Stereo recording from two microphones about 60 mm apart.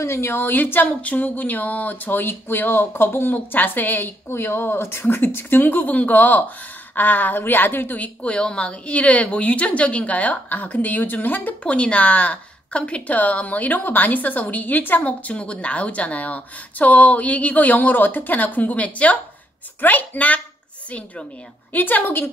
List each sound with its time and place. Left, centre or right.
0.0 s speech: left
8.2 s a woman's voice: centre
11.6 s a woman's voice: centre
21.7 s speech: left